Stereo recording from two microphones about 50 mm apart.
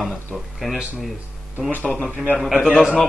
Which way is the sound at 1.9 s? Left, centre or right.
Left.